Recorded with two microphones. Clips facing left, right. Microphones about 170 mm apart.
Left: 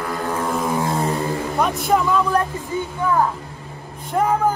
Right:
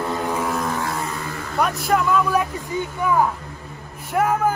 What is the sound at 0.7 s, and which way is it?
Vehicle, 25° left (ahead or behind).